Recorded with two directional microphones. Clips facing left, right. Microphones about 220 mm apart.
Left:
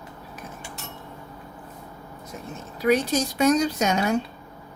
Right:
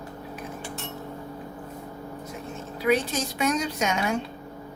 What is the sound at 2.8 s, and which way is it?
A woman's voice, 40° left (ahead or behind).